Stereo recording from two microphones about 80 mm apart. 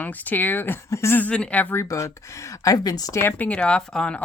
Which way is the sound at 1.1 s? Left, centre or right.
Centre.